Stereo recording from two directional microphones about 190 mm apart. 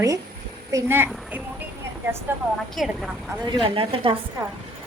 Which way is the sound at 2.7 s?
Centre (ahead or behind).